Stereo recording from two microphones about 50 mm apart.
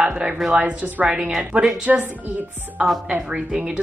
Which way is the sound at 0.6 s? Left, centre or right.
Right.